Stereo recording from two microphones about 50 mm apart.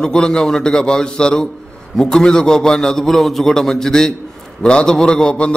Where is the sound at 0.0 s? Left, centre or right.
Centre.